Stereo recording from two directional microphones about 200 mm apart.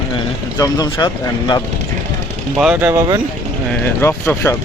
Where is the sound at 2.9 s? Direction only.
20° right (ahead or behind).